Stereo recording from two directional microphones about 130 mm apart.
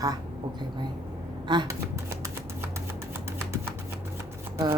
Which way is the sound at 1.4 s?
35° right (ahead or behind).